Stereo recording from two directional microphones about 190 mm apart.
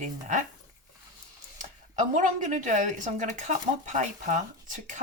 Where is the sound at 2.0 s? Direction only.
40° right (ahead or behind).